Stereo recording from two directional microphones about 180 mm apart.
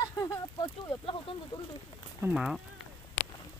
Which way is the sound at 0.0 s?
20° left (ahead or behind).